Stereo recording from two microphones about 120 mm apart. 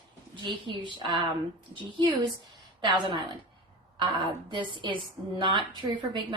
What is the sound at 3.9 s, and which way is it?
A woman's voice, 45° right (ahead or behind).